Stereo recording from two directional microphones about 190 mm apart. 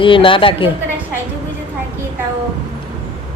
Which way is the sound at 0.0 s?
25° left (ahead or behind).